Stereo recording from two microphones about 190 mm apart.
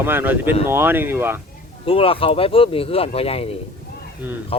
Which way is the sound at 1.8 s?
30° left (ahead or behind).